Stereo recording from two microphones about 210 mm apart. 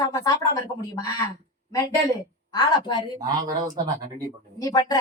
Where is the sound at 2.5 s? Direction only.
20° left (ahead or behind).